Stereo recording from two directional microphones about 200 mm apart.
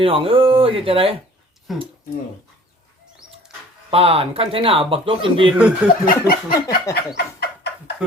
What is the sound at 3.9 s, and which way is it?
Speech, 30° right (ahead or behind).